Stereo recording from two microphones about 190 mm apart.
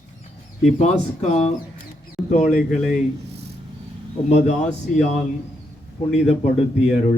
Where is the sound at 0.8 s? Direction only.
35° left (ahead or behind).